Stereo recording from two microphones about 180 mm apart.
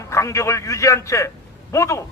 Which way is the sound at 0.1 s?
15° left (ahead or behind).